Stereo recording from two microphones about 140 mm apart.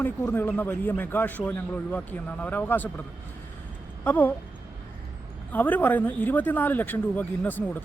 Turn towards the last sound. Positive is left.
turn(degrees=10)  # may be behind; listen again after turning